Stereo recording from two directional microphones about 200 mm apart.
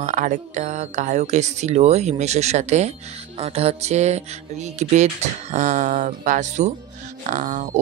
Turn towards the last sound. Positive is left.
turn(degrees=-40)  # may be behind; listen again after turning